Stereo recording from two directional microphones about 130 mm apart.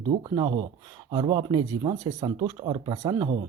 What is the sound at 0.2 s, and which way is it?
Speech, 35° right (ahead or behind).